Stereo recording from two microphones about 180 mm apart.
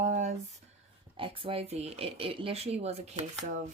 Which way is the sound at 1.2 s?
30° right (ahead or behind).